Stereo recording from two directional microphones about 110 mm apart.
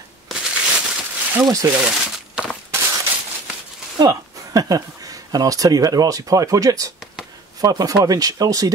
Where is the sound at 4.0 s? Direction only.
35° right (ahead or behind).